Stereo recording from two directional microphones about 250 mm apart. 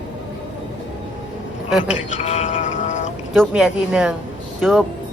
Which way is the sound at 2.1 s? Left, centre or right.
Left.